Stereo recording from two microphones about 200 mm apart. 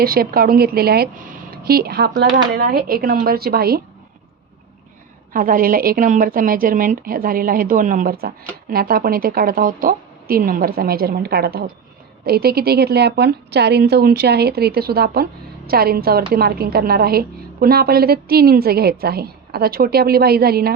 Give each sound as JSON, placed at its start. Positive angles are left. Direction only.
{"t": 0.0, "sound": "a woman's voice", "side_deg": -50}
{"t": 5.3, "sound": "a woman's voice", "side_deg": -45}